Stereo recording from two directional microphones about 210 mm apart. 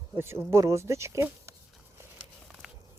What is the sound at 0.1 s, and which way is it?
Speech, 10° right (ahead or behind).